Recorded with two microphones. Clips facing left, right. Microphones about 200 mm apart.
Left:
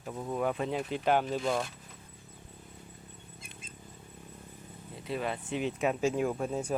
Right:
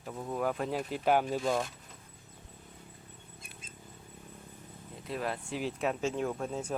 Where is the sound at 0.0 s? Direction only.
Centre (ahead or behind).